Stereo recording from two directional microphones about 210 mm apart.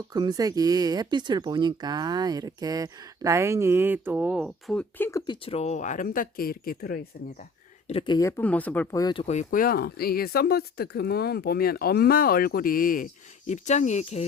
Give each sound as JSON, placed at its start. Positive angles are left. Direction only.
{"t": 0.1, "sound": "speech", "side_deg": -20}
{"t": 7.9, "sound": "speech", "side_deg": 25}
{"t": 9.2, "sound": "speech", "side_deg": 35}